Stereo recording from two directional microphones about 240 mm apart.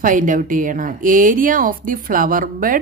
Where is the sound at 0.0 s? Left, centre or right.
Right.